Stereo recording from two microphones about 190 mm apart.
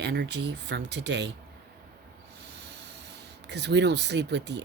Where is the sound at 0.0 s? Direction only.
60° right (ahead or behind).